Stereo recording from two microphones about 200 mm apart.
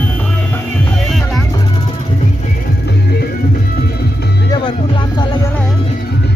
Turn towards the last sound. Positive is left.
turn(degrees=20)  # may be behind; listen again after turning